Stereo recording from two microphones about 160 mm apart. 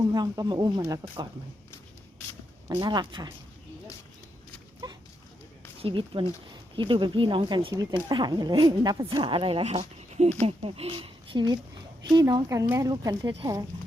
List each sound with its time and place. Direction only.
0.0 s speech: 25° right (ahead or behind)
2.6 s speech: 25° right (ahead or behind)
4.8 s dog: 25° right (ahead or behind)
5.8 s speech: 35° right (ahead or behind)